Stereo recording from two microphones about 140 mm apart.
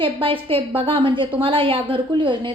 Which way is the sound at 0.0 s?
40° right (ahead or behind).